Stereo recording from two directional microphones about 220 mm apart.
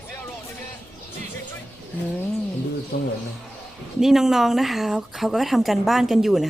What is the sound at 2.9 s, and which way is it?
Speech, 55° left (ahead or behind).